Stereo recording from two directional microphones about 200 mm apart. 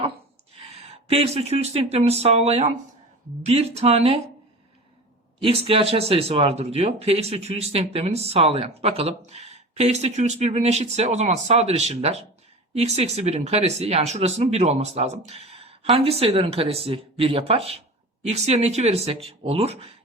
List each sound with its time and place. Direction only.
0.5 s speech: 30° right (ahead or behind)
5.4 s speech: 30° right (ahead or behind)